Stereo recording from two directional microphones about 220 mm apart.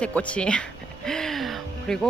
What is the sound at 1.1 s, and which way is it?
Music, centre (ahead or behind).